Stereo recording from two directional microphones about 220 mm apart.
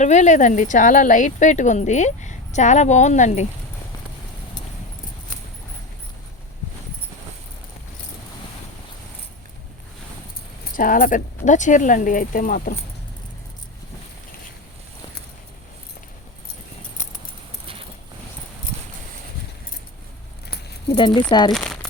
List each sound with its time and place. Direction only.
0.0 s speech: 30° left (ahead or behind)
10.8 s speech: 40° left (ahead or behind)
20.5 s keys jangling: 50° left (ahead or behind)
20.9 s speech: 20° left (ahead or behind)